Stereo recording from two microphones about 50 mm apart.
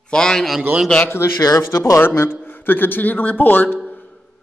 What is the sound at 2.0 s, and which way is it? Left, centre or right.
A man's voice, left.